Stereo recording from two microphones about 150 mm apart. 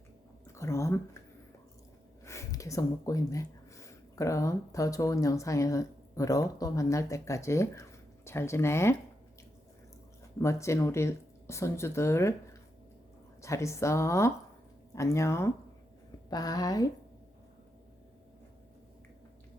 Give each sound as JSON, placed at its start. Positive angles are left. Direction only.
{"t": 0.4, "sound": "a sound", "side_deg": 20}
{"t": 2.2, "sound": "speech", "side_deg": 20}
{"t": 10.3, "sound": "speech", "side_deg": 20}
{"t": 13.4, "sound": "speech", "side_deg": 20}